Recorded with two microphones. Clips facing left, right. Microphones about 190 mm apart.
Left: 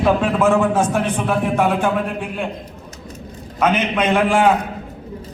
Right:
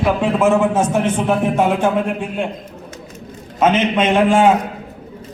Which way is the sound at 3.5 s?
25° right (ahead or behind).